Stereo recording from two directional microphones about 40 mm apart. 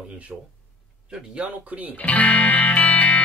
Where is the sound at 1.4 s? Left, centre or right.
Right.